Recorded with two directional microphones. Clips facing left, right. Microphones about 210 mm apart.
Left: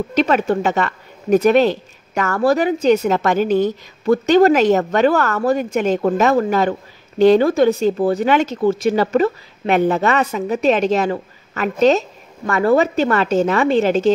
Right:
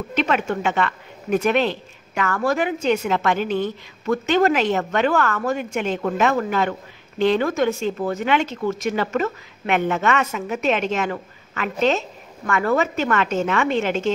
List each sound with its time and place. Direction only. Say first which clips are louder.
0.1 s a woman's voice: left 5 dB; 40° left (ahead or behind)